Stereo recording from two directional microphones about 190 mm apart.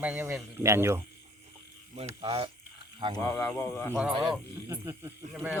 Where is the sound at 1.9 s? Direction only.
35° right (ahead or behind).